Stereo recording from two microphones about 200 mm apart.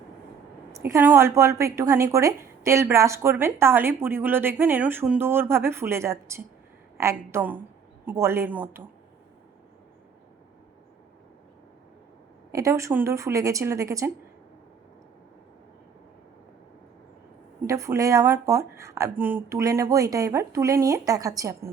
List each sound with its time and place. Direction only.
0.7 s a woman's voice: 15° right (ahead or behind)
12.5 s a woman's voice: 15° right (ahead or behind)
17.7 s a woman's voice: 15° right (ahead or behind)